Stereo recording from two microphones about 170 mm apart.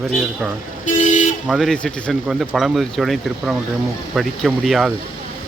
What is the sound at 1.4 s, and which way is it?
Speech, centre (ahead or behind).